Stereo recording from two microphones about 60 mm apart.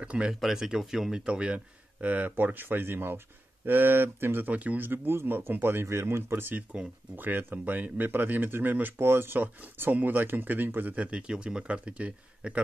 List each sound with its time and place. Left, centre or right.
0.0 s speech: centre
0.3 s speech: centre
1.2 s speech: centre; by 4.6 s right
4.6 s speech: right
4.8 s speech: right; by 12.5 s centre